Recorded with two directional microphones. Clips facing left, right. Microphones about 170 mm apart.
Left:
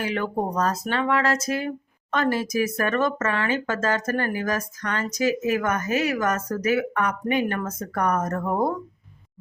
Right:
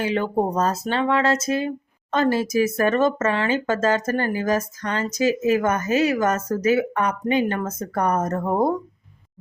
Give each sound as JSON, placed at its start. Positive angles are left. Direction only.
{"t": 0.0, "sound": "speech", "side_deg": -25}